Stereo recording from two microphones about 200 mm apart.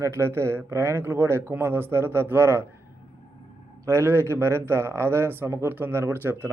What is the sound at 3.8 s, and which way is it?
A man's voice, 15° right (ahead or behind).